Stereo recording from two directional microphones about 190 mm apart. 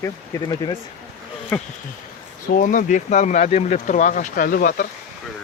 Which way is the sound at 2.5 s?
45° left (ahead or behind).